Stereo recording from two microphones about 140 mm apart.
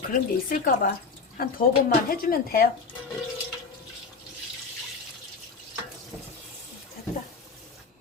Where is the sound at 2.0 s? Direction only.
90° left.